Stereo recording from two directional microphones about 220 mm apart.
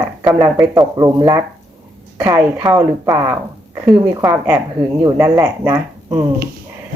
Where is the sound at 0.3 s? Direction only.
15° right (ahead or behind).